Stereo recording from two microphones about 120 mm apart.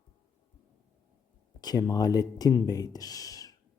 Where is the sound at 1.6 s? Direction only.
35° left (ahead or behind).